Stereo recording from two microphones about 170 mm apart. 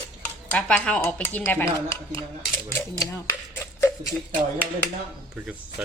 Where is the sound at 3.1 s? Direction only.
15° left (ahead or behind).